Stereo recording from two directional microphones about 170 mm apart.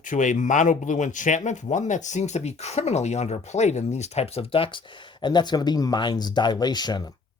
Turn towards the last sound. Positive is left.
turn(degrees=25)  # may be behind; listen again after turning